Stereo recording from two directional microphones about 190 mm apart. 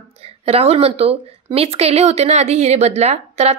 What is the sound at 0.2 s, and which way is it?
A woman's voice, 30° right (ahead or behind).